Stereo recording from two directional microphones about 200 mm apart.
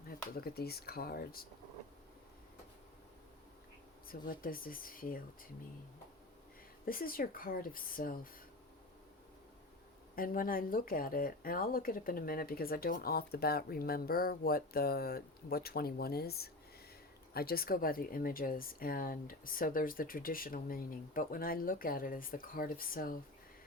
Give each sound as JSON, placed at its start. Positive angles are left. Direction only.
{"t": 0.3, "sound": "speech", "side_deg": 50}
{"t": 4.1, "sound": "speech", "side_deg": 45}
{"t": 6.8, "sound": "speech", "side_deg": 45}
{"t": 10.2, "sound": "speech", "side_deg": 45}